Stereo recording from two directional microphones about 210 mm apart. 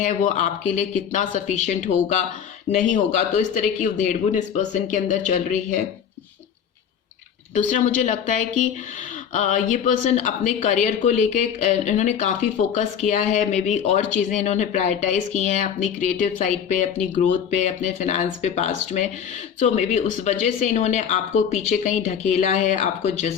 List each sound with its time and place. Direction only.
0.0 s speech: 35° left (ahead or behind)
7.5 s speech: 35° left (ahead or behind)